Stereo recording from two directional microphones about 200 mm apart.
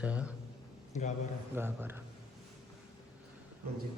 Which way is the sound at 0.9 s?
35° left (ahead or behind).